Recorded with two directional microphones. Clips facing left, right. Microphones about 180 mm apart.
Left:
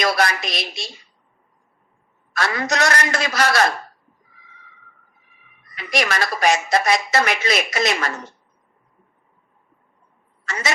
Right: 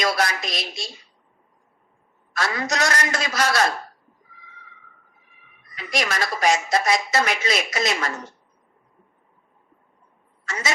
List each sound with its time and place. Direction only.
0.0 s a woman's voice: 65° left (ahead or behind)
2.3 s a woman's voice: 65° left (ahead or behind)
5.7 s a woman's voice: 65° left (ahead or behind)
10.4 s a woman's voice: 65° left (ahead or behind)